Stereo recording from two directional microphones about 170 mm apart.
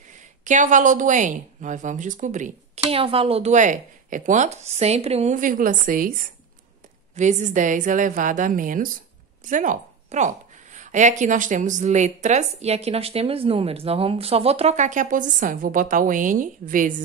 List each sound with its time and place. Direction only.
0.4 s a woman's voice: 45° right (ahead or behind)
7.2 s a woman's voice: 45° right (ahead or behind)